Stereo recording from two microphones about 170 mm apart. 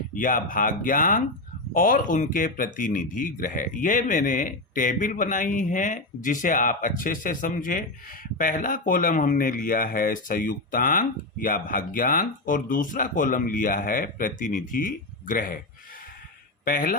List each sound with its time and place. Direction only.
0.1 s speech: 55° left (ahead or behind)
16.6 s speech: 55° left (ahead or behind)